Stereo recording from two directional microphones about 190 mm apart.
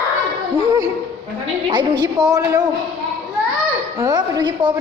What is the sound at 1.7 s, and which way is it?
Speech, 20° right (ahead or behind).